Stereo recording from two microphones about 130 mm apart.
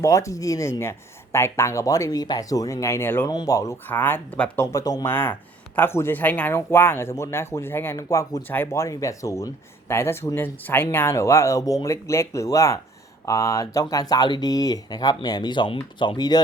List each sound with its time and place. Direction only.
0.0 s speech: 25° left (ahead or behind)
5.0 s speech: 15° left (ahead or behind); by 16.4 s 35° left (ahead or behind)